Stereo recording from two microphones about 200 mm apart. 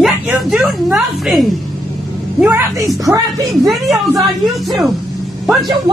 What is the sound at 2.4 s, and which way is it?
Speech, 15° right (ahead or behind).